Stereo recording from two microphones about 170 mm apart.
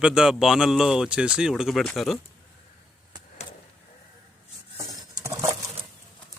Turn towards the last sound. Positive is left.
turn(degrees=-20)  # may be behind; listen again after turning